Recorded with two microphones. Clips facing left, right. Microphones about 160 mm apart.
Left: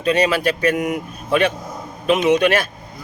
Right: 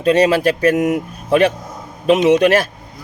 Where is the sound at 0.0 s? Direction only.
45° right (ahead or behind).